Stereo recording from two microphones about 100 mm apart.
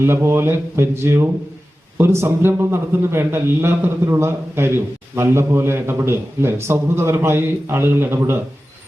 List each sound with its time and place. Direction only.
0.0 s a man's voice: 25° right (ahead or behind)